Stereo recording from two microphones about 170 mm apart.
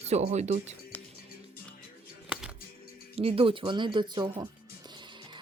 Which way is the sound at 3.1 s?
35° right (ahead or behind).